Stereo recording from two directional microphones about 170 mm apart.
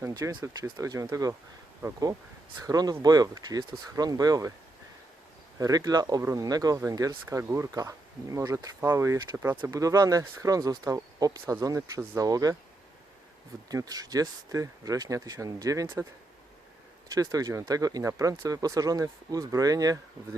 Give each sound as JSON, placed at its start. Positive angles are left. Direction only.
{"t": 0.0, "sound": "speech", "side_deg": -20}
{"t": 5.5, "sound": "speech", "side_deg": -20}
{"t": 13.7, "sound": "speech", "side_deg": -20}
{"t": 17.1, "sound": "speech", "side_deg": -20}